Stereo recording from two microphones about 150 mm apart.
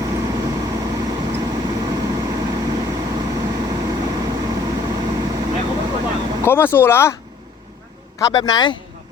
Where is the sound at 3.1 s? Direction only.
25° right (ahead or behind).